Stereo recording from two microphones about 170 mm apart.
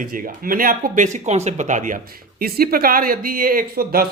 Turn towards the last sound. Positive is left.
turn(degrees=-60)  # may be behind; listen again after turning